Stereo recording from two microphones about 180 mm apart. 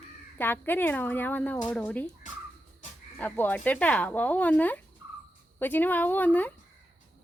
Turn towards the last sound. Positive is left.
turn(degrees=10)  # may be behind; listen again after turning